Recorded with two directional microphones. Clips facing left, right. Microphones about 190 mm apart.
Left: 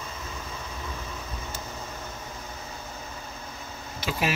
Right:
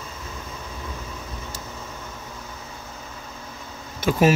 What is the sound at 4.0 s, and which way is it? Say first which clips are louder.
Speech: right 10 dB; 50° right (ahead or behind).